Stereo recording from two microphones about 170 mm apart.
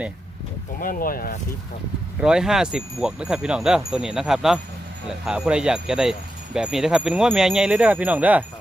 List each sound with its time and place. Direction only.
0.8 s speech: 55° left (ahead or behind)
2.2 s speech: 5° right (ahead or behind)